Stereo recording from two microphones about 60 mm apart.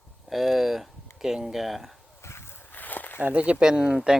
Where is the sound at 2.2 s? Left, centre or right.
Left.